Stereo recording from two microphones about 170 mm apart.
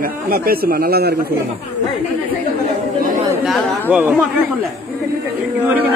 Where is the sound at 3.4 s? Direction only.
Centre (ahead or behind).